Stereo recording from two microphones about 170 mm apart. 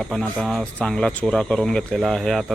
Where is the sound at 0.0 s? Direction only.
Centre (ahead or behind).